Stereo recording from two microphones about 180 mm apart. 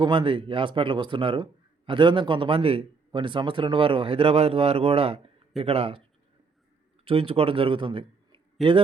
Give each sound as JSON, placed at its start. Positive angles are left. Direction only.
{"t": 0.0, "sound": "speech", "side_deg": -30}
{"t": 7.0, "sound": "a man's voice", "side_deg": -30}